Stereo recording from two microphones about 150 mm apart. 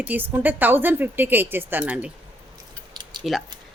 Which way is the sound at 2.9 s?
30° right (ahead or behind).